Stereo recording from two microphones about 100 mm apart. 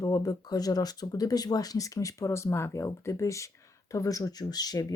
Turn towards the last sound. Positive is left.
turn(degrees=40)  # may be behind; listen again after turning